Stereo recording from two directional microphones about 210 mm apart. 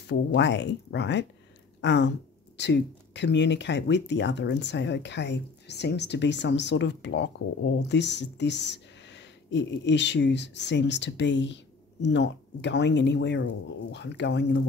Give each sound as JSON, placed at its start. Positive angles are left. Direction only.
{"t": 0.0, "sound": "speech", "side_deg": 55}